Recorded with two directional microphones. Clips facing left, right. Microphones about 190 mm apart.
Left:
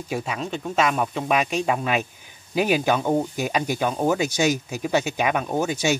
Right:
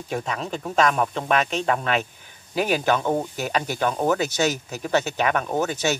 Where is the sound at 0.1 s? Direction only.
5° left (ahead or behind).